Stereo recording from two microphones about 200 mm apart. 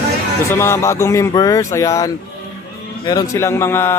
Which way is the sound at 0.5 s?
10° left (ahead or behind).